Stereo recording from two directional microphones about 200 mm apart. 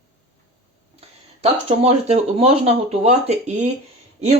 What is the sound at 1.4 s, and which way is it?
Speech, 30° right (ahead or behind).